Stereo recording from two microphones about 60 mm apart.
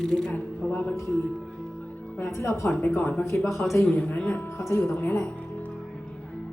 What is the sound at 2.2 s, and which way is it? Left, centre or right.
Speech, left.